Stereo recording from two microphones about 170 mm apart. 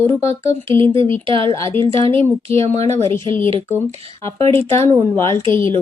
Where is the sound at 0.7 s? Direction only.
30° right (ahead or behind).